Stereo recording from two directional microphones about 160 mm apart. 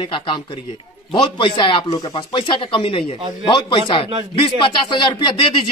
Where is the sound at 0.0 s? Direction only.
30° left (ahead or behind).